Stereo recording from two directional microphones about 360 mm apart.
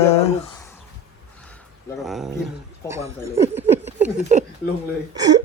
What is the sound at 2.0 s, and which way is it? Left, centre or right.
Speech, centre.